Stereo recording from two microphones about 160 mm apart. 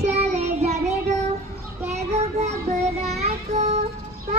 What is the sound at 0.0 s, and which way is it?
Child singing, 40° right (ahead or behind).